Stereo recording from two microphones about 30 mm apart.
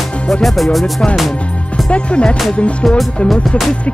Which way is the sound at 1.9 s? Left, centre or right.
Left.